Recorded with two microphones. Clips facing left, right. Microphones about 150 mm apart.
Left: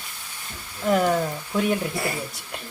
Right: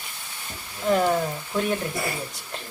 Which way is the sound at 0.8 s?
Centre (ahead or behind).